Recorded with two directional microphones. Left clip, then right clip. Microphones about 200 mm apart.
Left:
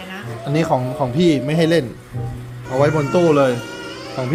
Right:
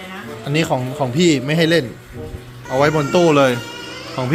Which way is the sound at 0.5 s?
5° left (ahead or behind).